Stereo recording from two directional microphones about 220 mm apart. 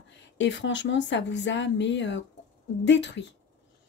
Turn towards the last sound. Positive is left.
turn(degrees=55)  # may be behind; listen again after turning